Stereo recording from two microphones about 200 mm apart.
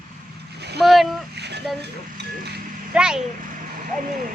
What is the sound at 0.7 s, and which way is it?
Speech, centre (ahead or behind).